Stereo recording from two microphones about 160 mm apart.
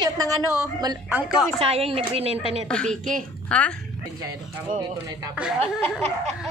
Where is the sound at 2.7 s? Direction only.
5° left (ahead or behind).